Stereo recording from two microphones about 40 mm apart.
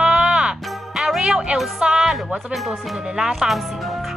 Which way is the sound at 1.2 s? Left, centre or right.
Centre.